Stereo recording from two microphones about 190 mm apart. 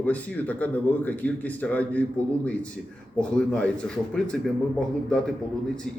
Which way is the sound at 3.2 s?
5° left (ahead or behind).